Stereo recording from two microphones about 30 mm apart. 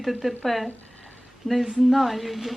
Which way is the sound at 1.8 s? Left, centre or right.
Centre.